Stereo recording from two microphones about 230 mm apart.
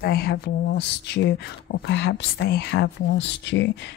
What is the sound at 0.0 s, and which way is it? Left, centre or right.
Speech, left.